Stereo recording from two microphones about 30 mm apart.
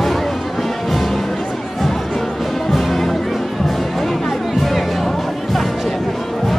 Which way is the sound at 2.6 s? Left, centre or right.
Centre.